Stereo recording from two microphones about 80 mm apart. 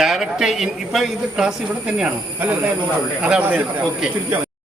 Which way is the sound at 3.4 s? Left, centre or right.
Right.